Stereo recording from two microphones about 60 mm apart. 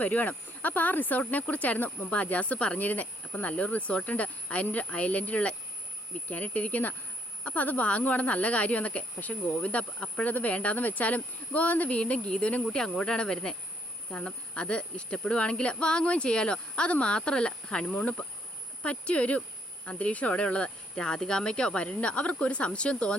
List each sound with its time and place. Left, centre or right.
0.0 s speech: left